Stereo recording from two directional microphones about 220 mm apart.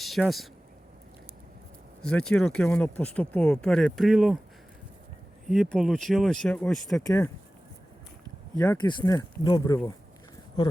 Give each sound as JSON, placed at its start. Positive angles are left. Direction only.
{"t": 0.0, "sound": "speech", "side_deg": 0}
{"t": 2.0, "sound": "speech", "side_deg": 5}
{"t": 5.5, "sound": "speech", "side_deg": 0}
{"t": 8.5, "sound": "speech", "side_deg": 15}